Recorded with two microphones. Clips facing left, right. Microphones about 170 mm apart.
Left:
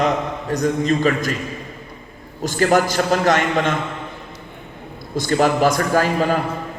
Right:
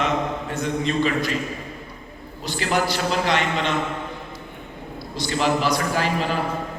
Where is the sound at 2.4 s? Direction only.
45° left (ahead or behind).